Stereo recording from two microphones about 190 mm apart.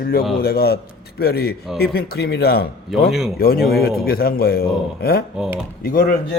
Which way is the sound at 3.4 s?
55° left (ahead or behind).